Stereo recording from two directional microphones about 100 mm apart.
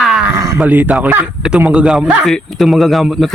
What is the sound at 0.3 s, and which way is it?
Roaring cats, 30° right (ahead or behind).